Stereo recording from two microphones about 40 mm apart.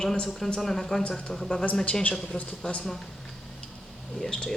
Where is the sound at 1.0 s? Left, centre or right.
Left.